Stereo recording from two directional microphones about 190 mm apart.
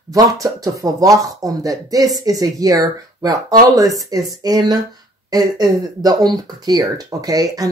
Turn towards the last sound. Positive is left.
turn(degrees=-20)  # may be behind; listen again after turning